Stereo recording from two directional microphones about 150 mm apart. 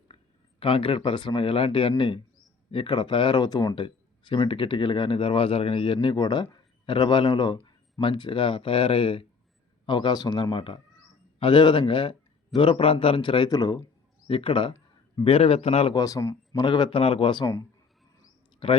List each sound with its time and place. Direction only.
0.6 s speech: 35° left (ahead or behind)
14.3 s a man's voice: 35° left (ahead or behind)
16.0 s speech: 25° left (ahead or behind)
17.4 s speech: 20° left (ahead or behind)
18.6 s speech: 35° left (ahead or behind)